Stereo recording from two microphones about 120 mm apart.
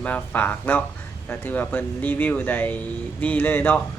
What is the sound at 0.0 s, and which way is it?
Speech, 15° left (ahead or behind).